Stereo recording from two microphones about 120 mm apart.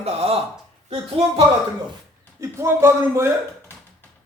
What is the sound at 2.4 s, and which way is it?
Speech, 25° right (ahead or behind).